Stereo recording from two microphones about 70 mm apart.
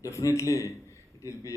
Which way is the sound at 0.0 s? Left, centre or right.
Left.